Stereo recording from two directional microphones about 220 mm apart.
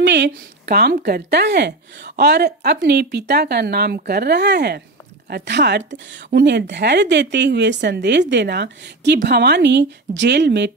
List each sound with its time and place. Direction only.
0.0 s speech: 50° right (ahead or behind)